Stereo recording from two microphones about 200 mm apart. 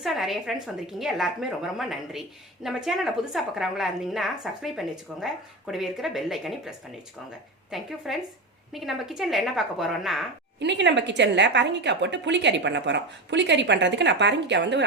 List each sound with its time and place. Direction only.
0.0 s a woman's voice: centre (ahead or behind)
10.6 s a woman's voice: 60° right (ahead or behind)